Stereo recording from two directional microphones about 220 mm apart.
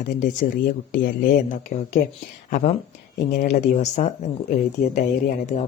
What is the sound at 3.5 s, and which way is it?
A woman's voice, 30° left (ahead or behind).